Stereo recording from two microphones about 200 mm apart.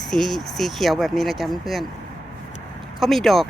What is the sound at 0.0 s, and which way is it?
Speech, centre (ahead or behind).